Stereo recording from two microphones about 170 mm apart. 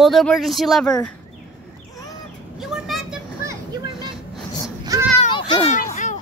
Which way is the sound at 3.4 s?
20° right (ahead or behind).